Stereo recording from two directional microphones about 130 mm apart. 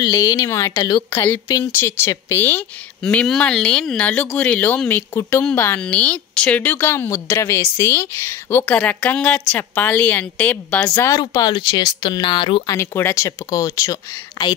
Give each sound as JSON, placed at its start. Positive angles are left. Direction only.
{"t": 0.0, "sound": "a woman's voice", "side_deg": 25}
{"t": 1.5, "sound": "speech", "side_deg": 20}
{"t": 11.1, "sound": "speech", "side_deg": 30}
{"t": 12.7, "sound": "a woman's voice", "side_deg": 20}